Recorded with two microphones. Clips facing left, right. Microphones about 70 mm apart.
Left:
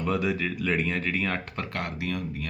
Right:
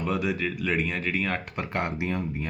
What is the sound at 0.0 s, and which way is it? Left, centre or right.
Speech, centre.